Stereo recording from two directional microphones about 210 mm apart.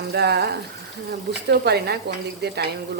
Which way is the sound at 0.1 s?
50° right (ahead or behind).